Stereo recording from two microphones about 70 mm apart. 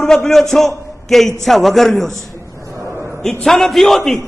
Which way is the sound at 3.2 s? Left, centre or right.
Centre.